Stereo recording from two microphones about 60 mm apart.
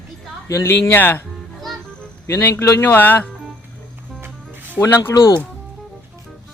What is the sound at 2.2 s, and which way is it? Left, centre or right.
Speech, left.